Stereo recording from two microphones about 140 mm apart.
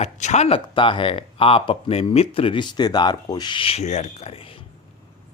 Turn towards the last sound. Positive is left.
turn(degrees=40)  # may be behind; listen again after turning